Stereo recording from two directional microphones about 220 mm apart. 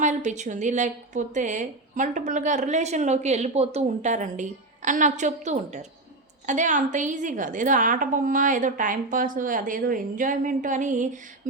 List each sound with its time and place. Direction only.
0.0 s a woman's voice: 35° right (ahead or behind)